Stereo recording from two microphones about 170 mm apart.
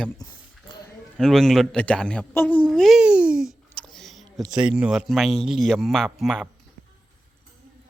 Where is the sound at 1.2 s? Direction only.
Centre (ahead or behind).